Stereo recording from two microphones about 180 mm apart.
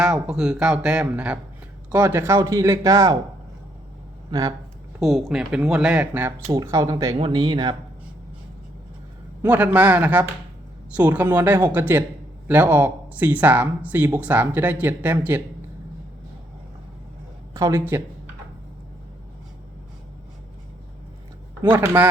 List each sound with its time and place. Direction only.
0.0 s speech: 5° right (ahead or behind)
4.3 s speech: 20° right (ahead or behind)
4.9 s speech: centre (ahead or behind); by 7.8 s 25° right (ahead or behind)
9.4 s speech: 10° right (ahead or behind)
17.5 s speech: 15° right (ahead or behind)
21.6 s speech: 10° right (ahead or behind)